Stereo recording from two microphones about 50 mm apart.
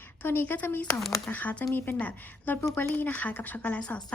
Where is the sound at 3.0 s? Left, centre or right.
Left.